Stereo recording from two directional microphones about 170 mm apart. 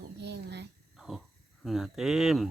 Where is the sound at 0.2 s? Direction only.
80° right.